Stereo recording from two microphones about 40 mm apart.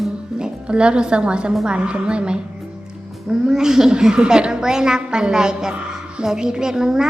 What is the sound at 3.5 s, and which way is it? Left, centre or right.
A woman's voice, centre.